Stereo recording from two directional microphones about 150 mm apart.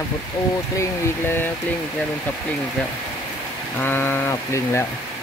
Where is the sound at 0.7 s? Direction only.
15° left (ahead or behind).